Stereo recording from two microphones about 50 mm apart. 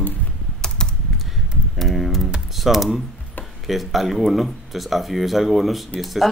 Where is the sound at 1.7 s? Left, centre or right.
Centre.